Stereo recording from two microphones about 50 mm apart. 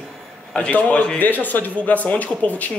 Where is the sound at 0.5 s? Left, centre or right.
Left.